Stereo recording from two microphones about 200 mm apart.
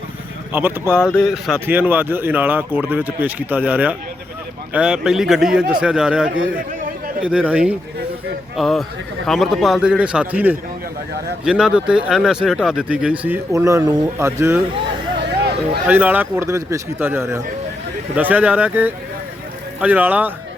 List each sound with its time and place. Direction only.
0.5 s speech: 10° right (ahead or behind)
1.1 s speech: centre (ahead or behind)
15.4 s a sound: 55° right (ahead or behind)
15.9 s speech: 10° right (ahead or behind)